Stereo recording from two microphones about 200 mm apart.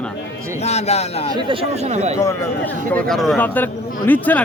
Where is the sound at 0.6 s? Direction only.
35° left (ahead or behind).